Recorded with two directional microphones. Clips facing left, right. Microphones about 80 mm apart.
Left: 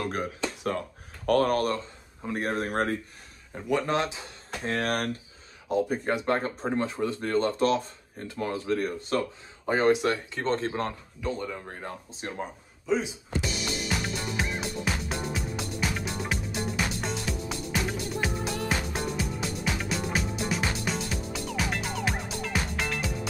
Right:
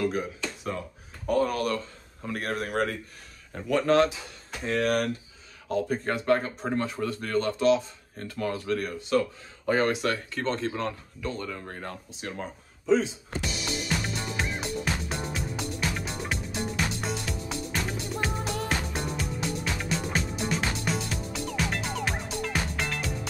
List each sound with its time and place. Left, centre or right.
0.0 s speech: left
1.5 s speech: left
2.2 s speech: left
3.7 s speech: centre
4.6 s speech: left
5.7 s speech: centre
10.4 s speech: left
11.2 s speech: centre
12.1 s speech: left
12.4 s music: centre